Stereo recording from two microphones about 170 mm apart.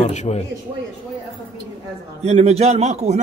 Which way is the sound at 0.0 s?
40° left (ahead or behind).